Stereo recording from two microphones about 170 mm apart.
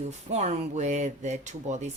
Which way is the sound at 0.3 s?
40° right (ahead or behind).